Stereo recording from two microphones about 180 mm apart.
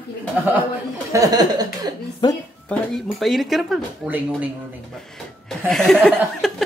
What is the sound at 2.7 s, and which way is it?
Speech, centre (ahead or behind).